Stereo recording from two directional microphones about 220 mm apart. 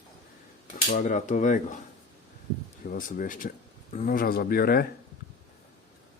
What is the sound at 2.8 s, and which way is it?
Speech, 40° left (ahead or behind).